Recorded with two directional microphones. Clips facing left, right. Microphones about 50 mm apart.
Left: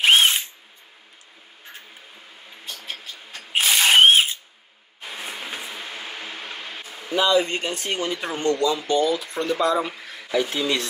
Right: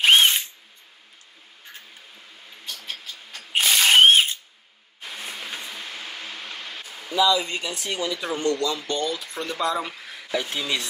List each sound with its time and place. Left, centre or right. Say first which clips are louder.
0.0 s drill: even; centre
2.5 s a sound: left 1 dB; centre
7.2 s speech: left 1 dB; left
8.6 s speech: left 5 dB; centre